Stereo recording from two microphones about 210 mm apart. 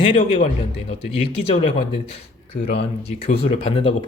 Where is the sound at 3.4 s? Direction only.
25° left (ahead or behind).